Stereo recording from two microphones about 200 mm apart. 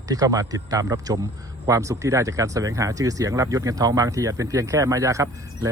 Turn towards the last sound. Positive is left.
turn(degrees=-15)  # may be behind; listen again after turning